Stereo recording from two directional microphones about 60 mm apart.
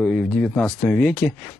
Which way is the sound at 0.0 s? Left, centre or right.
Centre.